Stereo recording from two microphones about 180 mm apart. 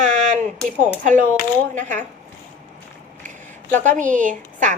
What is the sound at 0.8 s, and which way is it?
A woman's voice, 45° right (ahead or behind).